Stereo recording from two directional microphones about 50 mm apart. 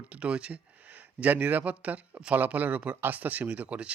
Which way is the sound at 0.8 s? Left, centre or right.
Right.